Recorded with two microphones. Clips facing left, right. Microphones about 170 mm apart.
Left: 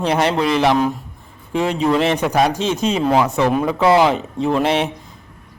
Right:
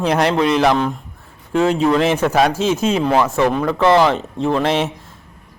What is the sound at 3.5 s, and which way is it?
Speech, 10° left (ahead or behind).